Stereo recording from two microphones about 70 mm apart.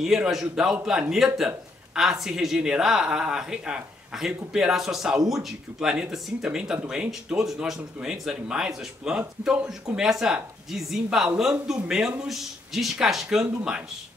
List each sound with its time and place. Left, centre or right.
0.0 s speech: centre
9.7 s speech: centre